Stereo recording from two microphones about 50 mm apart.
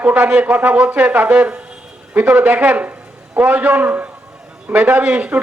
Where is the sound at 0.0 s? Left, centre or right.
Right.